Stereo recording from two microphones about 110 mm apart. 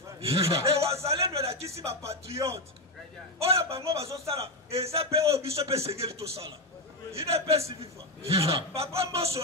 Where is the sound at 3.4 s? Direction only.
65° right (ahead or behind).